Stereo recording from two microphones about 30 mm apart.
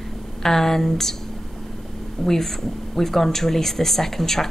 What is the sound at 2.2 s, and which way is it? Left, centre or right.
Speech, centre.